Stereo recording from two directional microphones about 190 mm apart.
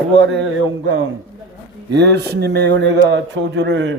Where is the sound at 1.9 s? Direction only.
65° right (ahead or behind).